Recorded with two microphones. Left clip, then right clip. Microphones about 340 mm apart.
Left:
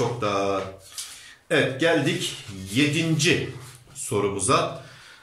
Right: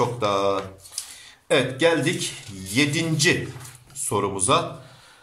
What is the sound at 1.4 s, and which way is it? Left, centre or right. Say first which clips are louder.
Speech: right 2 dB; centre.